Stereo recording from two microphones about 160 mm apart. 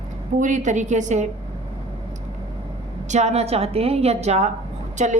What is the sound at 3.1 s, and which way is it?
A woman's voice, 45° right (ahead or behind).